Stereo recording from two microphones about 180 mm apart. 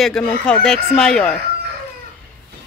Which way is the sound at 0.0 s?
5° left (ahead or behind).